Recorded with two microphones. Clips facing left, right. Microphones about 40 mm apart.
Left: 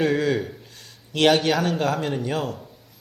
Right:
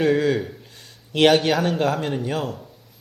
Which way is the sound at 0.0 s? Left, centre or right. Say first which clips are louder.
Right 2 dB; centre.